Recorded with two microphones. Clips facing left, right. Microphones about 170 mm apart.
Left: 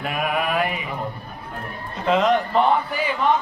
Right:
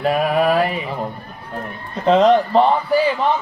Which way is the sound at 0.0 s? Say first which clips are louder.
Right 8 dB; 35° right (ahead or behind).